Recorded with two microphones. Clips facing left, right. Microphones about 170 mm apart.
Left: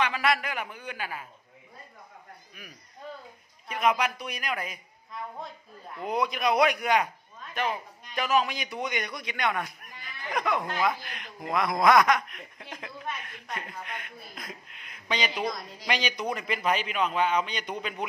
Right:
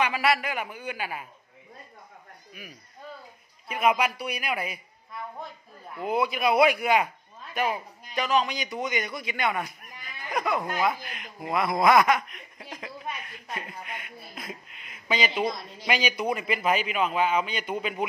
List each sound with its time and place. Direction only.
0.0 s a man's voice: 10° right (ahead or behind)
3.6 s a man's voice: 10° right (ahead or behind)
5.9 s a man's voice: 5° right (ahead or behind)